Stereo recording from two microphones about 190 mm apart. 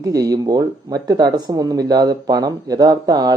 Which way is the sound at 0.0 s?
20° right (ahead or behind).